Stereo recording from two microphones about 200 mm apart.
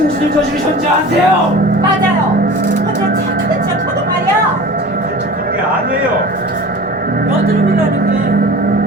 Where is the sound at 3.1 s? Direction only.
50° right (ahead or behind).